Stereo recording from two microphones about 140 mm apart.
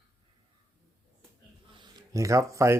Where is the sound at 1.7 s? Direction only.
30° right (ahead or behind).